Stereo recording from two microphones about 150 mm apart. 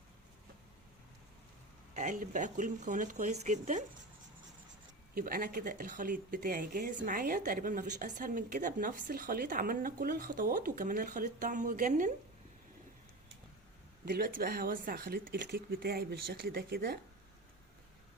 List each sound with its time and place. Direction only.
1.9 s speech: 55° right (ahead or behind)
5.1 s speech: 70° right (ahead or behind); by 12.1 s 55° right (ahead or behind)
14.0 s speech: 75° right (ahead or behind); by 17.0 s 90° right